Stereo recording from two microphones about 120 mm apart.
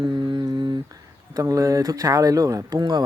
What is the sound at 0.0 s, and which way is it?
Humming, 40° right (ahead or behind).